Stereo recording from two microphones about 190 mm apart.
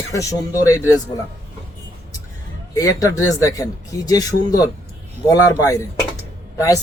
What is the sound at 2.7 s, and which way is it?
Speech, 15° left (ahead or behind).